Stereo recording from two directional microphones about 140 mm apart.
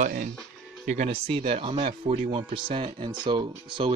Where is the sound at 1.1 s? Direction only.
40° right (ahead or behind).